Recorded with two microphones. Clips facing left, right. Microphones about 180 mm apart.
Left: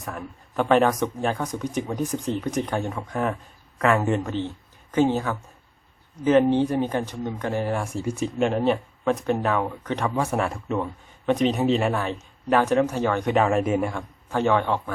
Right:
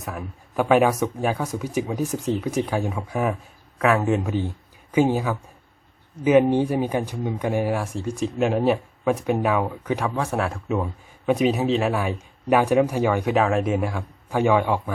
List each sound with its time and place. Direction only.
0.0 s speech: 5° right (ahead or behind)